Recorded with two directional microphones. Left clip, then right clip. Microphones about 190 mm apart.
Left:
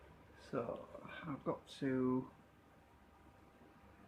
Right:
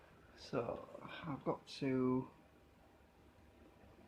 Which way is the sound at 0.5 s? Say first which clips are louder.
Right 1 dB; 25° right (ahead or behind).